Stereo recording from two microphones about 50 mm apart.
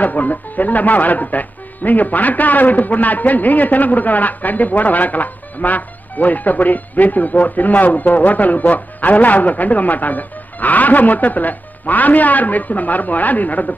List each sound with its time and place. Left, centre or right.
0.0 s speech: left